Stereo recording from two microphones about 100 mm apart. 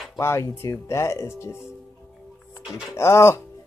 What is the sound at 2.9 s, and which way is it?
Speech, 30° left (ahead or behind).